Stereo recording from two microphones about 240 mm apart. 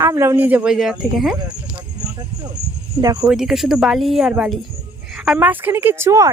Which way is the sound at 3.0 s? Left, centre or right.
Centre.